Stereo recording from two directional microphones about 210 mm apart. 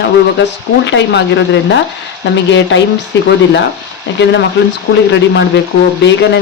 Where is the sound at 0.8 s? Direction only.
60° left (ahead or behind).